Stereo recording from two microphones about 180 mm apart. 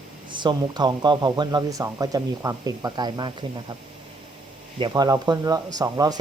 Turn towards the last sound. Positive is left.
turn(degrees=-20)  # may be behind; listen again after turning